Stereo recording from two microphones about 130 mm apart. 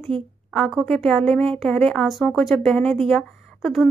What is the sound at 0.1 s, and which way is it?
Speech, 45° right (ahead or behind).